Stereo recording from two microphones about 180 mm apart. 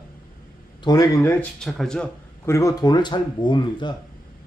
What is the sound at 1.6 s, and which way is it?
Speech, centre (ahead or behind).